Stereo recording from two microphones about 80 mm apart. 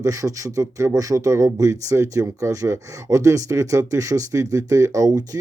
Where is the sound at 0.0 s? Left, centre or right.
Right.